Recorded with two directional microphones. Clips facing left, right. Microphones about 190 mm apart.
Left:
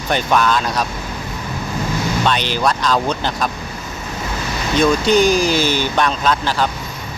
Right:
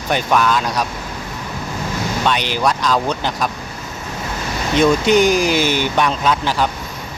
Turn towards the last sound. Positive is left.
turn(degrees=-15)  # may be behind; listen again after turning